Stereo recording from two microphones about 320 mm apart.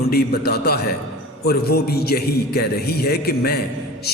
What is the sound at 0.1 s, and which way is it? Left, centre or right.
A man's voice, left.